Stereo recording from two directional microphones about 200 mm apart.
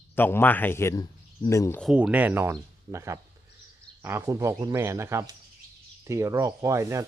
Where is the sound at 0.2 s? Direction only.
10° left (ahead or behind).